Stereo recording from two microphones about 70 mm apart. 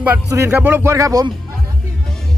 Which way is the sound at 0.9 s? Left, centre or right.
Right.